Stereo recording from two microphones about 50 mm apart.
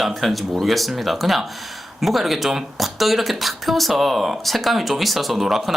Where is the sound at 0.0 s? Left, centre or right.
Centre.